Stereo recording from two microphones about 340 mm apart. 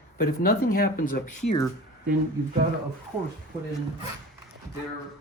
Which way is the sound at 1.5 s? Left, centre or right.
Centre.